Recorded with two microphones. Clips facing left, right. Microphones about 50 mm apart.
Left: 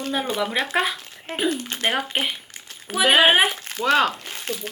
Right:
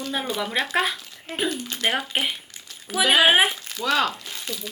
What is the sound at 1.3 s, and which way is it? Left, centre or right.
Speech, left.